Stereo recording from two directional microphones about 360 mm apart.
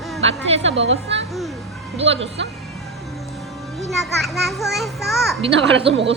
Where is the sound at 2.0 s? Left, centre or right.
Centre.